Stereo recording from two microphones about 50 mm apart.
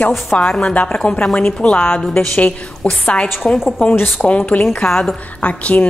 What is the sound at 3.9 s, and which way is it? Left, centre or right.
Speech, left.